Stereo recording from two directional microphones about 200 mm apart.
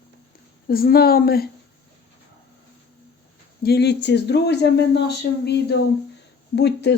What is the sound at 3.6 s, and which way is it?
Speech, 55° left (ahead or behind).